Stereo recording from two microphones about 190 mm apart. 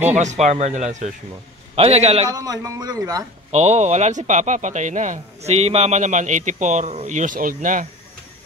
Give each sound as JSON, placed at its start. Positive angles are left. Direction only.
{"t": 0.0, "sound": "speech", "side_deg": -35}
{"t": 2.2, "sound": "speech", "side_deg": -20}
{"t": 3.5, "sound": "speech", "side_deg": -35}